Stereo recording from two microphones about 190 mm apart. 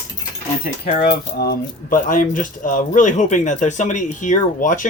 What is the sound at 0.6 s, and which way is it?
Speech, 50° left (ahead or behind).